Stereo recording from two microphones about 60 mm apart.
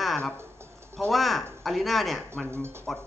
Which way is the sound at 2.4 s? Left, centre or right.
Right.